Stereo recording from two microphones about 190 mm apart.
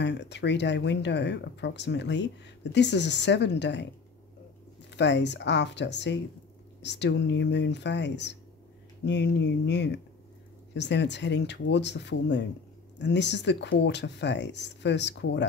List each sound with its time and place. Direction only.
0.0 s speech: 65° left (ahead or behind)
4.9 s speech: 65° left (ahead or behind)